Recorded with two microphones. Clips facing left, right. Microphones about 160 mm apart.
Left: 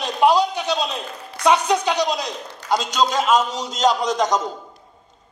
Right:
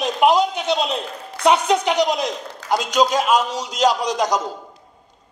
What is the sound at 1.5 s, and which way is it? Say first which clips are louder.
A woman's voice: right 1 dB; 20° right (ahead or behind).